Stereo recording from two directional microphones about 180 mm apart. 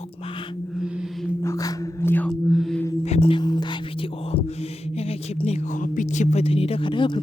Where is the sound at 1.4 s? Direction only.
20° left (ahead or behind).